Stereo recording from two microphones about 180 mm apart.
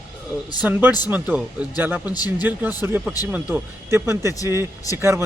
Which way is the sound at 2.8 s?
10° right (ahead or behind).